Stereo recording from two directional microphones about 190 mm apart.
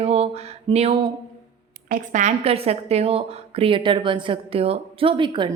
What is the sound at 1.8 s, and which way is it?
A woman's voice, 45° right (ahead or behind).